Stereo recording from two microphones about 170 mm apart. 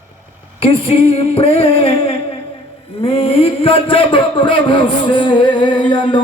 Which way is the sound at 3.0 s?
35° left (ahead or behind).